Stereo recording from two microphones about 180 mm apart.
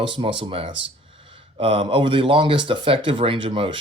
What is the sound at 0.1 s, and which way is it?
Speech, 30° right (ahead or behind).